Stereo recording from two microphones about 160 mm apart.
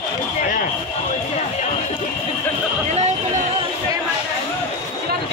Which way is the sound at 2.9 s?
45° right (ahead or behind).